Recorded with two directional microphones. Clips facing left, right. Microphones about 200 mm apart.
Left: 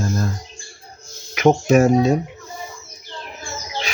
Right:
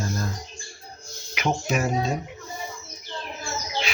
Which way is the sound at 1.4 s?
45° left (ahead or behind).